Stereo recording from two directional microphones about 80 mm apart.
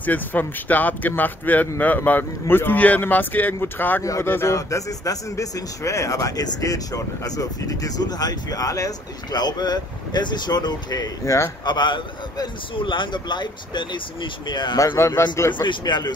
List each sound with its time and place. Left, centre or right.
0.0 s speech: left
4.0 s speech: left
4.3 s speech: left
4.6 s a man's voice: left
9.3 s speech: left
11.6 s a man's voice: left
15.0 s speech: left
15.5 s a man's voice: left